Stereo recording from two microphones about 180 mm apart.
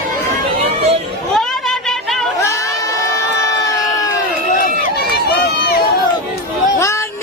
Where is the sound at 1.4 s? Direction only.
Centre (ahead or behind).